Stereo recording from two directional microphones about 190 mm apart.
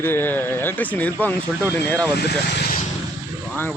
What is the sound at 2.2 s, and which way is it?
Speech, 55° left (ahead or behind).